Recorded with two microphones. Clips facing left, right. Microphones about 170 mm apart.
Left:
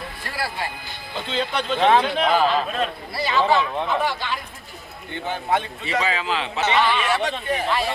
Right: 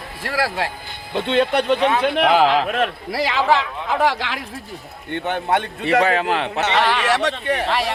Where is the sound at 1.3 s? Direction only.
65° right (ahead or behind); by 4.4 s 90° right.